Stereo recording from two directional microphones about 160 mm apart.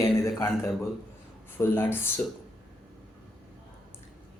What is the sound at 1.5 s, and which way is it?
Speech, 15° left (ahead or behind).